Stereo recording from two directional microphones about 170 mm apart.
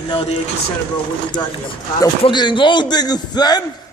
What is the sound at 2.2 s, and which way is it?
Speech, 25° left (ahead or behind).